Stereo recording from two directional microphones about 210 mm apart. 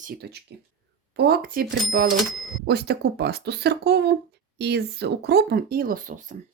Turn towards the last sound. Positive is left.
turn(degrees=-40)  # may be behind; listen again after turning